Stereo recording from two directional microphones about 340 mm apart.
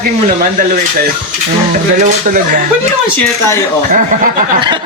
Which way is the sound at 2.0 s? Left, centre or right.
Right.